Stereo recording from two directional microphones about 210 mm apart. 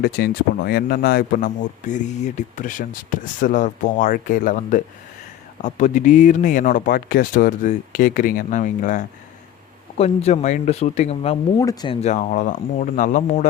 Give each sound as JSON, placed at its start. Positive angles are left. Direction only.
{"t": 0.0, "sound": "speech", "side_deg": 50}
{"t": 11.6, "sound": "speech", "side_deg": 20}
{"t": 11.9, "sound": "speech", "side_deg": 35}